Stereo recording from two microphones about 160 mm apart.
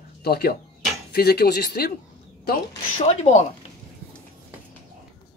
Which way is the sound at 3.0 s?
40° left (ahead or behind).